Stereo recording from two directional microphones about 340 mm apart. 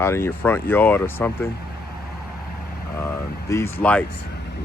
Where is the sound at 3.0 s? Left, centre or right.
Centre.